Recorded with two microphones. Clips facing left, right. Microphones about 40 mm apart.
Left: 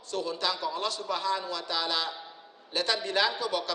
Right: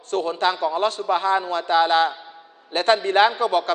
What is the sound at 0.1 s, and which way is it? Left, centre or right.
A man's voice, right.